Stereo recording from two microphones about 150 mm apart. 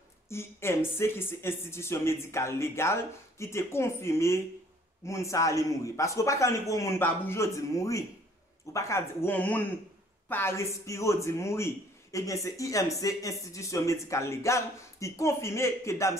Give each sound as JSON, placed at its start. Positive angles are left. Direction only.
{"t": 0.3, "sound": "a man's voice", "side_deg": 15}